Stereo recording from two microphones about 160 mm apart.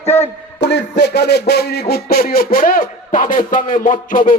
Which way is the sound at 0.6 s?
90° left.